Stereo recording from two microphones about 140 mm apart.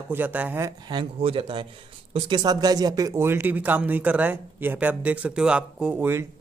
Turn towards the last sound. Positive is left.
turn(degrees=-15)  # may be behind; listen again after turning